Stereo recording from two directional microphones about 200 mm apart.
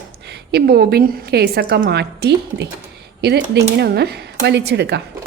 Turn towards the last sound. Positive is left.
turn(degrees=-55)  # may be behind; listen again after turning